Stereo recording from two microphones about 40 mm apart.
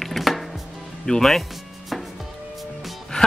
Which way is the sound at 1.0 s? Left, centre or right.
Centre.